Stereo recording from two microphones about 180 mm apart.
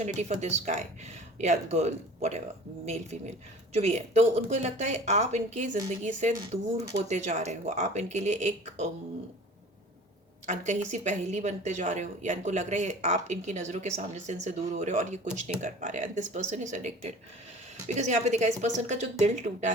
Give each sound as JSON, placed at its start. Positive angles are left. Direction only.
{"t": 0.0, "sound": "speech", "side_deg": -40}
{"t": 10.4, "sound": "speech", "side_deg": -40}